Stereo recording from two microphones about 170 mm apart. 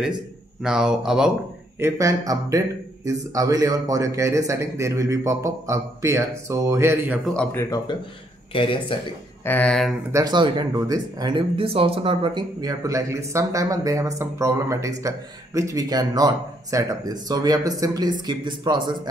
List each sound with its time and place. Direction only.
0.7 s speech: 5° right (ahead or behind)
1.8 s speech: 20° right (ahead or behind)
7.5 s speech: 20° left (ahead or behind)
9.4 s speech: 10° left (ahead or behind)
10.1 s speech: 25° right (ahead or behind)